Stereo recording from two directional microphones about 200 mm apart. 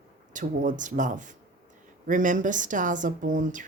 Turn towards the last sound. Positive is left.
turn(degrees=-40)  # may be behind; listen again after turning